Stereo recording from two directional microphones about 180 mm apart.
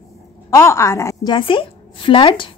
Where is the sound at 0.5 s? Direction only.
15° left (ahead or behind).